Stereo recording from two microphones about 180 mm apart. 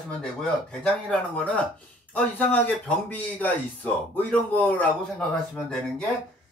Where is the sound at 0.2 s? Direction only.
5° left (ahead or behind).